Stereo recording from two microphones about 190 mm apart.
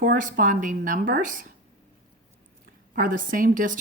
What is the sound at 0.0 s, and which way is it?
Speech, 45° right (ahead or behind).